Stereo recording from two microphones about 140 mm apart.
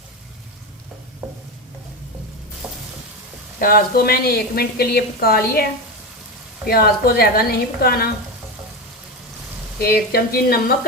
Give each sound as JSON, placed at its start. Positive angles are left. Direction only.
{"t": 1.2, "sound": "stir", "side_deg": -10}
{"t": 3.6, "sound": "a woman's voice", "side_deg": 90}
{"t": 6.7, "sound": "a woman's voice", "side_deg": 90}
{"t": 9.8, "sound": "a woman's voice", "side_deg": 90}